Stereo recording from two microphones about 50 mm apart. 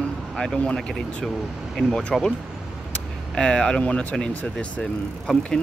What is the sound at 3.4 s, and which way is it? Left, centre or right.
Speech, centre.